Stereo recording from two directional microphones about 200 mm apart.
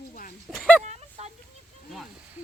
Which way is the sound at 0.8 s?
35° right (ahead or behind).